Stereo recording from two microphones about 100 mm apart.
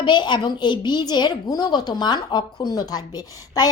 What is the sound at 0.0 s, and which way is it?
A woman's voice, 50° left (ahead or behind).